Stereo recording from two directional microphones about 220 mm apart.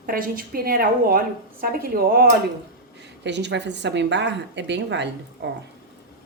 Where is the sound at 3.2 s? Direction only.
50° right (ahead or behind).